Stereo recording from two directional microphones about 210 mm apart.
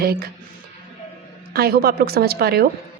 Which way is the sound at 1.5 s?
45° right (ahead or behind).